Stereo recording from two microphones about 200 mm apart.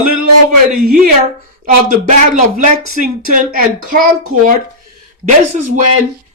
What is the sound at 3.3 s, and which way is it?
Speech, 45° right (ahead or behind).